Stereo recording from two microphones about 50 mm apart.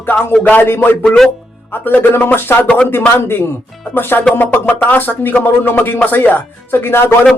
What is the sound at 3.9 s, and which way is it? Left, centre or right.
Speech, left.